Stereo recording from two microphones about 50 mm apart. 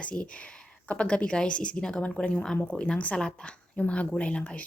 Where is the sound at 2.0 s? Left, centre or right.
Left.